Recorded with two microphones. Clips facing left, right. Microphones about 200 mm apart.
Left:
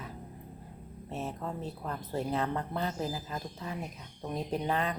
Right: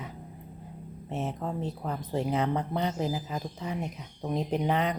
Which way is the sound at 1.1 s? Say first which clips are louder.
Right 4 dB; 20° right (ahead or behind).